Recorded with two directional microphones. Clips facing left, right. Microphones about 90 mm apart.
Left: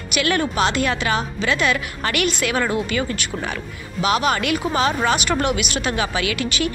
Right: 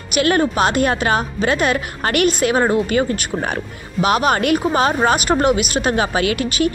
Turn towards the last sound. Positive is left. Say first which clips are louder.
# right 5 dB
turn(degrees=-45)  # may be behind; listen again after turning